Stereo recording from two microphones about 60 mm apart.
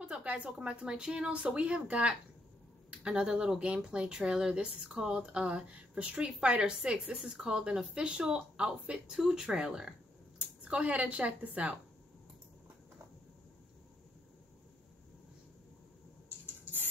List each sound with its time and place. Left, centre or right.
0.0 s speech: centre